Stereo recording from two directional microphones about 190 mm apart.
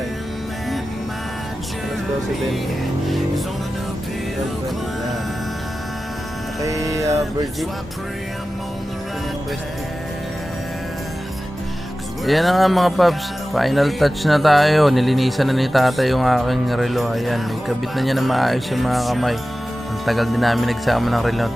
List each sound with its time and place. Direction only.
6.6 s music: 15° right (ahead or behind)
12.2 s speech: centre (ahead or behind)